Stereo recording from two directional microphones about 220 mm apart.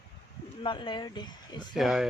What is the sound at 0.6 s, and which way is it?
Speech, 20° left (ahead or behind).